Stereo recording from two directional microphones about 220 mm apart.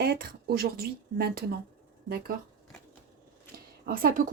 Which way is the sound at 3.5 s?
40° right (ahead or behind).